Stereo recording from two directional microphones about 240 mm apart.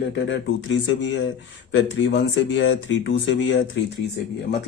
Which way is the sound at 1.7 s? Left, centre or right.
Left.